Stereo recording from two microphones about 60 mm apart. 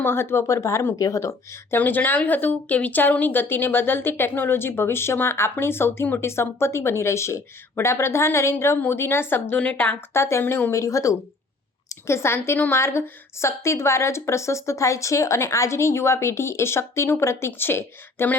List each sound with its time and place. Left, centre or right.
0.0 s a woman's voice: left
0.4 s speech: left
0.9 s speech: left
1.7 s a woman's voice: left
10.1 s a woman's voice: left
10.4 s speech: left
10.7 s speech: left
12.0 s a woman's voice: left
17.6 s speech: left